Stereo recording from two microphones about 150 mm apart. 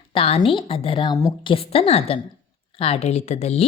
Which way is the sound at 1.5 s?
40° left (ahead or behind).